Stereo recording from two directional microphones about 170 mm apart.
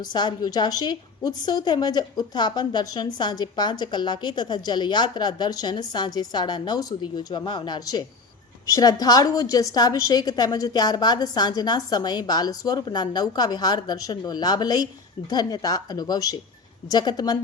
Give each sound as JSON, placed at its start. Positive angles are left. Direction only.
{"t": 0.0, "sound": "a woman's voice", "side_deg": 25}